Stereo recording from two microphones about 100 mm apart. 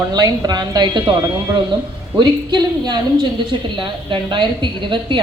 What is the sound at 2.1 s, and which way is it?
A man's voice, 45° right (ahead or behind).